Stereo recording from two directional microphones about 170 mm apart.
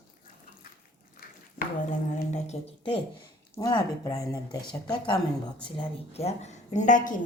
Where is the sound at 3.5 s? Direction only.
25° left (ahead or behind).